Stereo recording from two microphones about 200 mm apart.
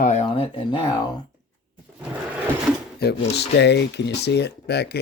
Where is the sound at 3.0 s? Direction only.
55° left (ahead or behind).